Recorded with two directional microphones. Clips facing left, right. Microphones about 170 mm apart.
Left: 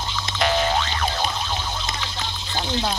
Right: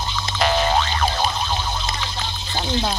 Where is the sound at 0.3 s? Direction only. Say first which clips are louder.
Right 2 dB; 40° right (ahead or behind).